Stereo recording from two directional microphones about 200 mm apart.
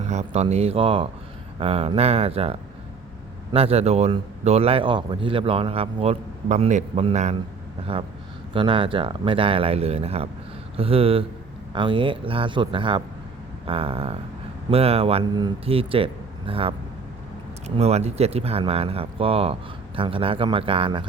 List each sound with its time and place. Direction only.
0.0 s a man's voice: 35° right (ahead or behind)
8.5 s a man's voice: 25° right (ahead or behind)
17.7 s a man's voice: 30° right (ahead or behind)